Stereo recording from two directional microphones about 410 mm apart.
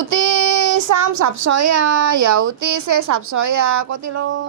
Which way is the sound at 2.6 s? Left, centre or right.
Right.